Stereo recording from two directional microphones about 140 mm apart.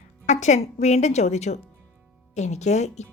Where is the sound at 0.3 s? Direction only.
55° left (ahead or behind).